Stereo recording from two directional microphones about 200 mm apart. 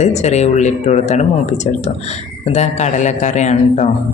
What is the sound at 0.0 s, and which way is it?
Speech, 35° left (ahead or behind).